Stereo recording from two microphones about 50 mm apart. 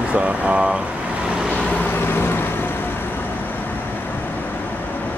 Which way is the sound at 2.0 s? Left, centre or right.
Left.